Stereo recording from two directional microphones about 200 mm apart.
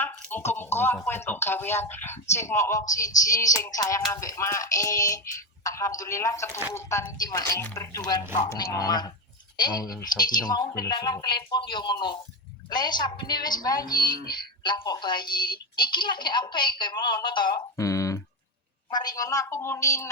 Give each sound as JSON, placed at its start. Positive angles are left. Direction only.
{"t": 0.0, "sound": "speech", "side_deg": 10}
{"t": 14.0, "sound": "music", "side_deg": 50}
{"t": 14.3, "sound": "speech", "side_deg": 25}